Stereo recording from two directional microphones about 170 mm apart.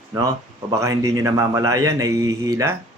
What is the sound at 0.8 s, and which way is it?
A man's voice, 20° right (ahead or behind).